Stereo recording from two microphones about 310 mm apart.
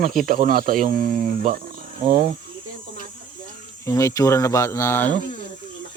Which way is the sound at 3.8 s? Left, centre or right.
Centre.